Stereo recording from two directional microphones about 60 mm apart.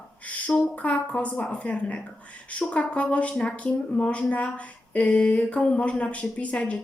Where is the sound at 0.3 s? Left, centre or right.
Left.